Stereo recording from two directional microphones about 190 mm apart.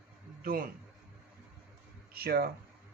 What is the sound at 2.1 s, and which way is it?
Speech, 55° right (ahead or behind).